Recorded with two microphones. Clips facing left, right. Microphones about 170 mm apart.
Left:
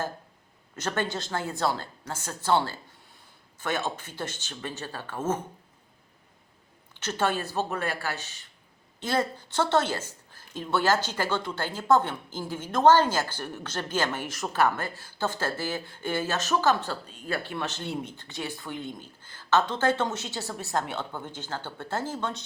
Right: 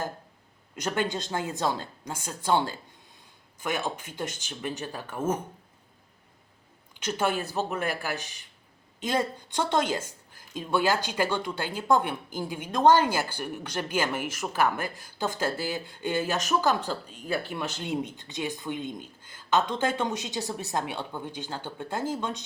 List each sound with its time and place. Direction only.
0.8 s a woman's voice: 15° right (ahead or behind)
7.0 s a woman's voice: 10° right (ahead or behind)